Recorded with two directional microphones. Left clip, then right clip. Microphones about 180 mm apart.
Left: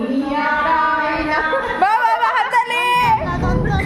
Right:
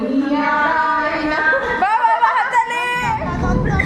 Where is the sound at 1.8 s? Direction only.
40° left (ahead or behind).